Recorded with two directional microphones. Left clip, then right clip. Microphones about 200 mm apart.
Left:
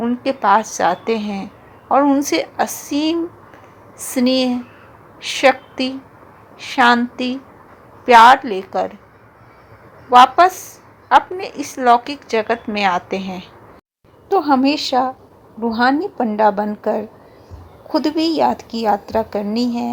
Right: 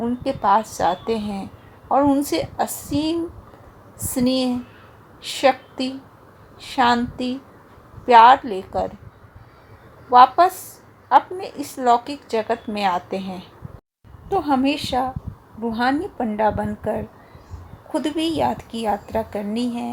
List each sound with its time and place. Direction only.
0.0 s a woman's voice: 15° left (ahead or behind)
10.1 s a woman's voice: 15° left (ahead or behind)